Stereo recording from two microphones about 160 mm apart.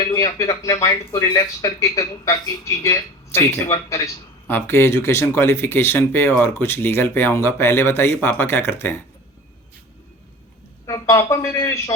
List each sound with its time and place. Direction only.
0.0 s a sound: 20° left (ahead or behind)
0.3 s speech: 20° left (ahead or behind)
10.8 s a man's voice: 20° left (ahead or behind)